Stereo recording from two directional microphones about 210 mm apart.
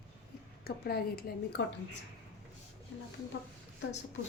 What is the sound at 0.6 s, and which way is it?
Speech, 45° left (ahead or behind).